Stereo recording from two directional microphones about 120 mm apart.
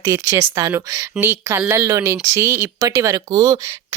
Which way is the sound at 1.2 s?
15° right (ahead or behind).